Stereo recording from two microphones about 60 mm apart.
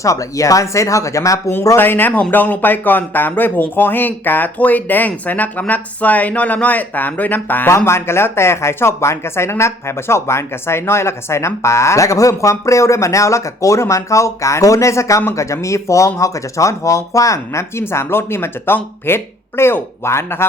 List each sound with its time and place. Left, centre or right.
0.0 s speech: left
1.7 s speech: left
7.7 s speech: left